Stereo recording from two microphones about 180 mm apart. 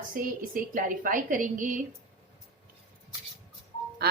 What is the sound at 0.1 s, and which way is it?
A woman's voice, 50° right (ahead or behind).